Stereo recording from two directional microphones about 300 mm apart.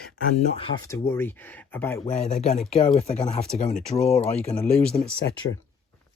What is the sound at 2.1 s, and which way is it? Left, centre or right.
Speech, left.